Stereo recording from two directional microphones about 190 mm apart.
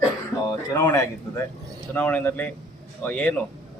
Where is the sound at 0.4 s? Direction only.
20° left (ahead or behind).